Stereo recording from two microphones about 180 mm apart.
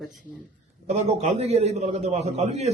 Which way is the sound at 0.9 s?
40° right (ahead or behind).